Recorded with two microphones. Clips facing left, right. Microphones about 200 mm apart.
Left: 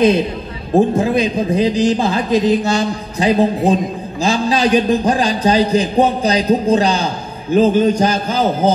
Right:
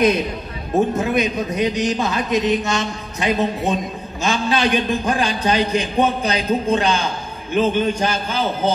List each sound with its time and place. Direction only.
0.7 s a man's voice: 30° left (ahead or behind)